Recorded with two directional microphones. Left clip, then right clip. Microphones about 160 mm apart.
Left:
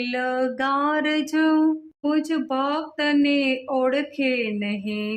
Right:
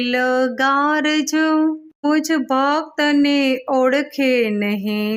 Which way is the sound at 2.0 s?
35° right (ahead or behind).